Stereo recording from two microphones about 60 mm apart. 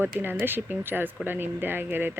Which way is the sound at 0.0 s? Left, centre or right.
Right.